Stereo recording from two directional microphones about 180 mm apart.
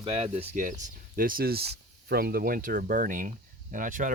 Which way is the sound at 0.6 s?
50° right (ahead or behind).